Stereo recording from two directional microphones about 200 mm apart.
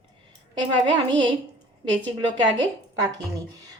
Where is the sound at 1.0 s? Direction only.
25° right (ahead or behind).